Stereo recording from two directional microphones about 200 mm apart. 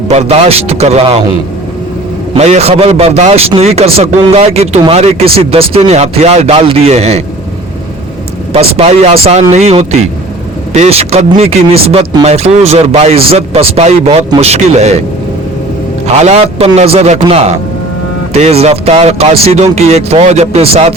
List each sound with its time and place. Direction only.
0.1 s a man's voice: 30° right (ahead or behind)
2.3 s a man's voice: 30° right (ahead or behind)
8.5 s a man's voice: 30° right (ahead or behind)
16.2 s a man's voice: 30° right (ahead or behind)